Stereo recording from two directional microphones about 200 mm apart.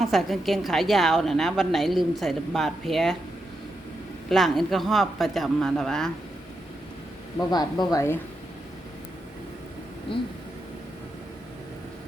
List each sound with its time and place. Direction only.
0.0 s a woman's voice: centre (ahead or behind)
4.3 s a woman's voice: centre (ahead or behind)
7.3 s speech: 20° left (ahead or behind)